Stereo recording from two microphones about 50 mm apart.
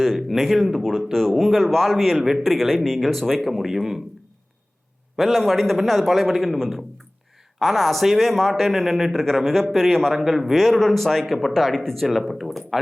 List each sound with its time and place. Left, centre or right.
0.0 s speech: centre
5.1 s speech: centre